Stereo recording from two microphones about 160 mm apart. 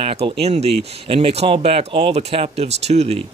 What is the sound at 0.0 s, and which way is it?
Speech, 40° right (ahead or behind).